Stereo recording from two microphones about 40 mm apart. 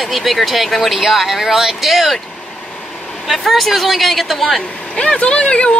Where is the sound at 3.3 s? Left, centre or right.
Centre.